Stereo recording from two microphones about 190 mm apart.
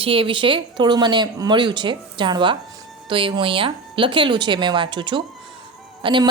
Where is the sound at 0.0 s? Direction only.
30° right (ahead or behind).